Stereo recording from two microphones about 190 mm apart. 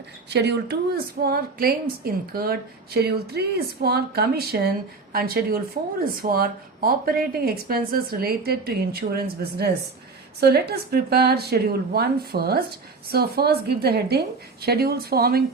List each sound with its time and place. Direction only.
0.3 s a woman's voice: 60° right (ahead or behind)